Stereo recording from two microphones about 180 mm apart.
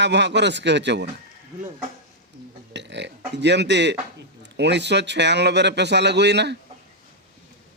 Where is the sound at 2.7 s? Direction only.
75° right (ahead or behind).